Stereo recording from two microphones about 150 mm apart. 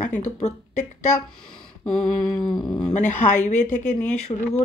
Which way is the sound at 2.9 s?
55° left (ahead or behind).